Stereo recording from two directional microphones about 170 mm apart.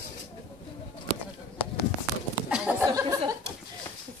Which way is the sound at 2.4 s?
5° right (ahead or behind).